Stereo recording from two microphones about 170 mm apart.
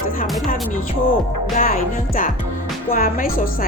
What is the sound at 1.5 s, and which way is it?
A woman's voice, 50° left (ahead or behind).